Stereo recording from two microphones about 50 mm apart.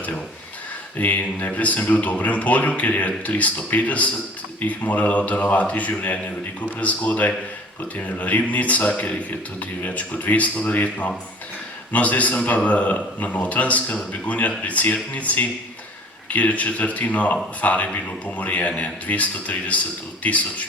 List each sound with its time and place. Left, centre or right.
0.9 s speech: left